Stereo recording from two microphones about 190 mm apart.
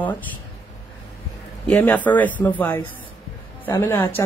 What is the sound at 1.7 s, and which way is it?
Speech, 5° left (ahead or behind).